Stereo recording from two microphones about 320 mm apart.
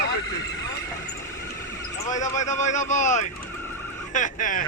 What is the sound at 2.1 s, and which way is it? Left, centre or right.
Speech, left.